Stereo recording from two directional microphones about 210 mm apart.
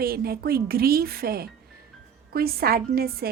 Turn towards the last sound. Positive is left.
turn(degrees=-45)  # may be behind; listen again after turning